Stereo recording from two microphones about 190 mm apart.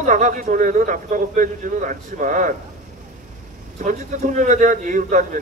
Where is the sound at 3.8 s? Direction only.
40° right (ahead or behind).